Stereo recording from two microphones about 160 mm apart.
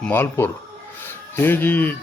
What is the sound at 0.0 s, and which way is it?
Speech, 15° left (ahead or behind).